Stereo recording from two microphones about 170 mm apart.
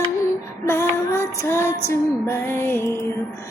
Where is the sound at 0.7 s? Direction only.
15° left (ahead or behind).